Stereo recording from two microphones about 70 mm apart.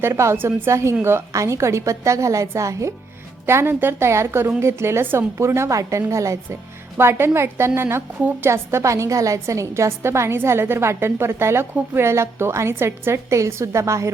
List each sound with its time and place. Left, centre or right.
0.0 s a woman's voice: right
3.4 s a woman's voice: right